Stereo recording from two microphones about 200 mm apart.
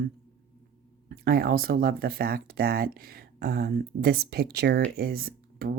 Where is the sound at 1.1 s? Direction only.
50° right (ahead or behind).